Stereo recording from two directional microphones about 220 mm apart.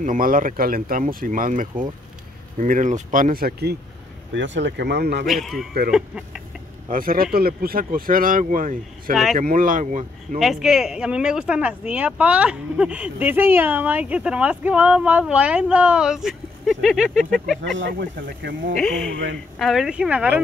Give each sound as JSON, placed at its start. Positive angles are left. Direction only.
{"t": 0.0, "sound": "speech", "side_deg": -40}
{"t": 5.2, "sound": "speech", "side_deg": 0}
{"t": 6.9, "sound": "speech", "side_deg": -40}
{"t": 9.1, "sound": "speech", "side_deg": 0}
{"t": 9.4, "sound": "speech", "side_deg": -40}
{"t": 10.4, "sound": "speech", "side_deg": 0}
{"t": 17.9, "sound": "speech", "side_deg": -40}
{"t": 18.8, "sound": "speech", "side_deg": 5}